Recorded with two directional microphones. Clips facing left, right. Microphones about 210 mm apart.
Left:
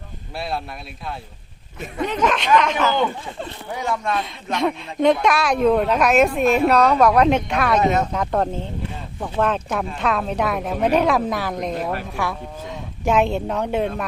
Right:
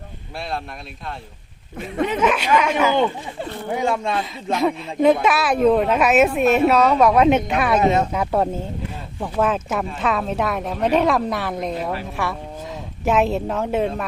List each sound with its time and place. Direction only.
0.3 s a woman's voice: centre (ahead or behind)
2.0 s speech: 5° right (ahead or behind)
3.7 s speech: 25° right (ahead or behind)
4.5 s a woman's voice: 5° right (ahead or behind)